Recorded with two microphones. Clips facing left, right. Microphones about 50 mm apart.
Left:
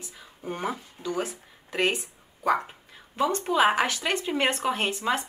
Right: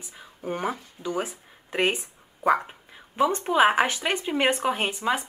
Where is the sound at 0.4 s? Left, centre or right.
Centre.